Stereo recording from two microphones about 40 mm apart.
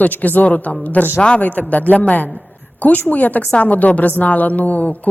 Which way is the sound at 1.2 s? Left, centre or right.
Left.